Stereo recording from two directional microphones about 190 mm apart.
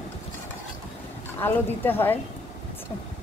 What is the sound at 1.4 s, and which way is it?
Speech, 10° left (ahead or behind).